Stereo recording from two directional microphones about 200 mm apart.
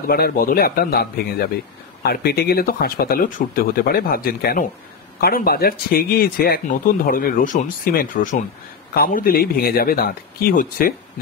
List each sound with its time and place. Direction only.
0.1 s speech: 50° left (ahead or behind)